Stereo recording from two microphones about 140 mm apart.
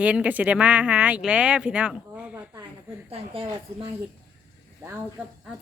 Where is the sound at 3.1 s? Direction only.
40° right (ahead or behind).